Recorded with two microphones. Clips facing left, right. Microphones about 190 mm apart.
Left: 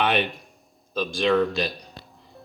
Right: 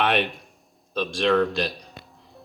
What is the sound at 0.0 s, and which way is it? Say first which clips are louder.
Speech: even; centre (ahead or behind).